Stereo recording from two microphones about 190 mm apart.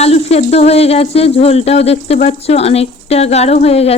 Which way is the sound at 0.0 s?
35° left (ahead or behind).